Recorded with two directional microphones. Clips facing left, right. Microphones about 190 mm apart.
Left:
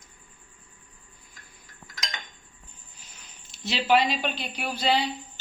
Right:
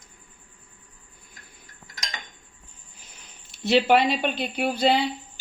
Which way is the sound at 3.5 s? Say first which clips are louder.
Right 4 dB; 55° right (ahead or behind).